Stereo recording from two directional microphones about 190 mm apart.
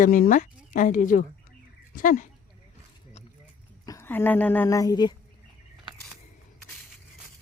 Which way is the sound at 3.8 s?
15° left (ahead or behind).